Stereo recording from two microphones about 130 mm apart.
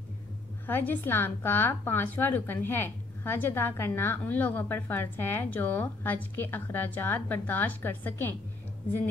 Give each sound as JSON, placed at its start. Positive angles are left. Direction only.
{"t": 0.7, "sound": "a woman's voice", "side_deg": 15}